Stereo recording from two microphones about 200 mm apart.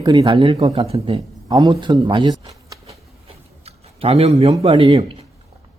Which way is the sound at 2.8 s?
30° right (ahead or behind).